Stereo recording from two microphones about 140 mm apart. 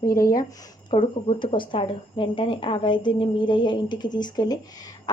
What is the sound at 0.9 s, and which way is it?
A woman's voice, 35° left (ahead or behind).